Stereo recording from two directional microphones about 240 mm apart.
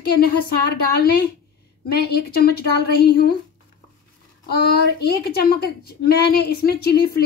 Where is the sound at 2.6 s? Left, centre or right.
Left.